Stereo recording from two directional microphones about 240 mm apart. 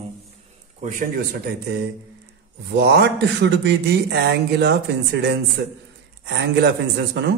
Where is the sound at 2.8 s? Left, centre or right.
Right.